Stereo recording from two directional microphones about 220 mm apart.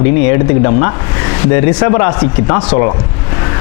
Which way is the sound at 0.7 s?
25° left (ahead or behind).